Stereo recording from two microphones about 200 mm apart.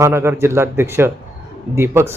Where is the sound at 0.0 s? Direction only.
10° right (ahead or behind).